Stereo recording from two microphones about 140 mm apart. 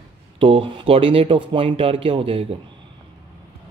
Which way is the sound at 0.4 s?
40° right (ahead or behind).